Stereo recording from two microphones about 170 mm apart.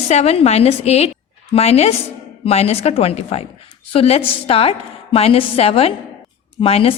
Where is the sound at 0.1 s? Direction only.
40° left (ahead or behind).